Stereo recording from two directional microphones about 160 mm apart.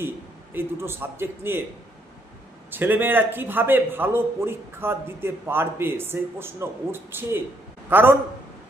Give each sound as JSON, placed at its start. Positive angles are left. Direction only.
{"t": 0.5, "sound": "a man's voice", "side_deg": -15}
{"t": 2.6, "sound": "a man's voice", "side_deg": -15}